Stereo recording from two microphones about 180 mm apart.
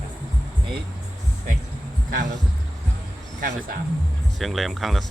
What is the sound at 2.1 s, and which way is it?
Speech, 75° right (ahead or behind).